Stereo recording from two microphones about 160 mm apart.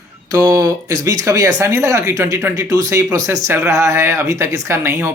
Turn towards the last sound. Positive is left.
turn(degrees=-15)  # may be behind; listen again after turning